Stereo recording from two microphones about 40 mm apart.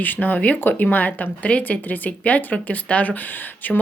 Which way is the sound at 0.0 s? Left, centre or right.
Left.